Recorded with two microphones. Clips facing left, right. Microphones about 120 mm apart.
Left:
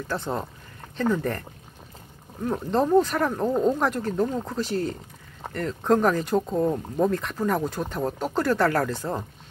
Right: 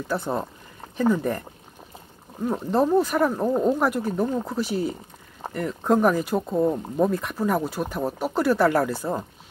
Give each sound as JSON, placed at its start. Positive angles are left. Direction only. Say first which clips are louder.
{"t": 0.1, "sound": "speech", "louder": "right 3 dB", "side_deg": -10}
{"t": 2.4, "sound": "speech", "louder": "right 2 dB", "side_deg": -10}